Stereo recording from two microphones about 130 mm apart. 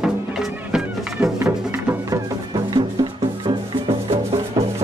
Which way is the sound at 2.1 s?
35° right (ahead or behind).